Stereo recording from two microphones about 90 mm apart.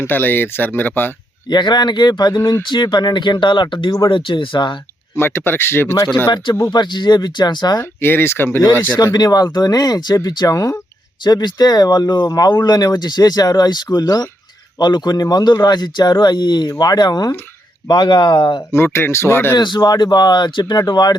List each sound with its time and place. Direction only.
0.0 s speech: 20° left (ahead or behind)
1.5 s speech: 55° left (ahead or behind)
2.4 s speech: 30° left (ahead or behind)
2.6 s speech: 60° left (ahead or behind)
5.1 s speech: 25° left (ahead or behind)
6.3 s speech: 55° left (ahead or behind)
7.8 s speech: 25° left (ahead or behind)
9.1 s speech: 50° left (ahead or behind)
11.2 s speech: 50° left (ahead or behind)
18.7 s speech: 25° left (ahead or behind)
19.5 s speech: 55° left (ahead or behind)